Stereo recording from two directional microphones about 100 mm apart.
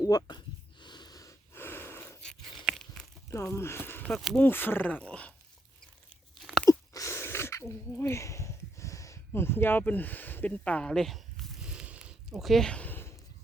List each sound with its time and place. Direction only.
0.0 s a sound: 40° left (ahead or behind)
1.5 s snort: 20° left (ahead or behind)
2.6 s crunch: 5° left (ahead or behind)
3.2 s speech: 25° left (ahead or behind); by 5.3 s 10° left (ahead or behind)
6.3 s crunch: centre (ahead or behind)
6.7 s a sound: 30° left (ahead or behind); by 12.1 s 10° right (ahead or behind)
12.4 s speech: centre (ahead or behind); by 13.1 s 20° left (ahead or behind)